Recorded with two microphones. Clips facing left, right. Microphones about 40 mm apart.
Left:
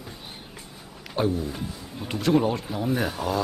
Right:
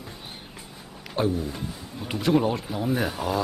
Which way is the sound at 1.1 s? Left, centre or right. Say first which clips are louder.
Even; centre.